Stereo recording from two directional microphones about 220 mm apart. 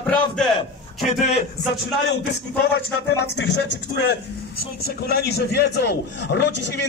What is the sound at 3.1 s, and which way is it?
Speech, 50° left (ahead or behind).